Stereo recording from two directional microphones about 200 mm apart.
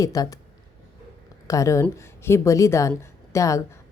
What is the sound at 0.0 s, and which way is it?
Speech, 15° left (ahead or behind).